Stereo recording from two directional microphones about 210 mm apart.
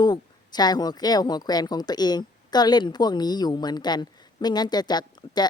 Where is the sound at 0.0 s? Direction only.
20° left (ahead or behind).